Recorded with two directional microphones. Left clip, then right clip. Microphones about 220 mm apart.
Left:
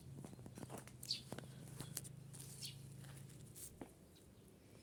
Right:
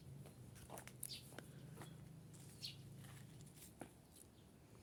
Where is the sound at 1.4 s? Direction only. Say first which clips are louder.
Left 2 dB; 5° left (ahead or behind).